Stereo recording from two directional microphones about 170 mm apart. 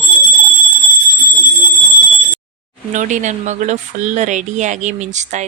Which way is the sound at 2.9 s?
45° right (ahead or behind).